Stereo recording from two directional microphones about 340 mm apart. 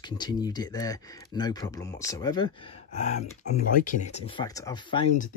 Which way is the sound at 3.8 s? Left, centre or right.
Centre.